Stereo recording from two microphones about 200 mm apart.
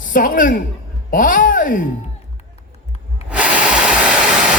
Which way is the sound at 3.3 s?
5° right (ahead or behind).